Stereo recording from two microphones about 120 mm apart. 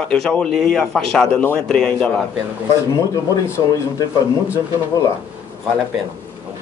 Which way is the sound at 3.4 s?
20° left (ahead or behind).